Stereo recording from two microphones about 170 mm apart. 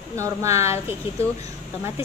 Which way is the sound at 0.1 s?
15° right (ahead or behind).